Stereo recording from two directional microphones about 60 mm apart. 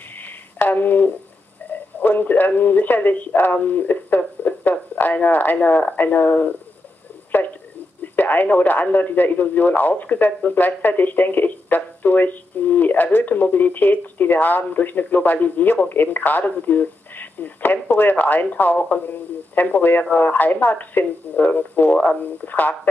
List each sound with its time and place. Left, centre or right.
0.2 s a sound: left
1.7 s speech: left
8.0 s speech: left